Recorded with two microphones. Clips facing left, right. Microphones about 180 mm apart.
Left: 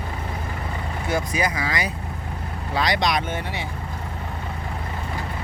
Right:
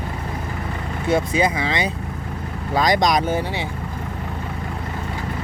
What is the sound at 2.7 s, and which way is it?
Speech, 45° right (ahead or behind).